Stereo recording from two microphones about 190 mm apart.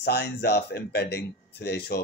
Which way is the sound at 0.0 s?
60° left (ahead or behind).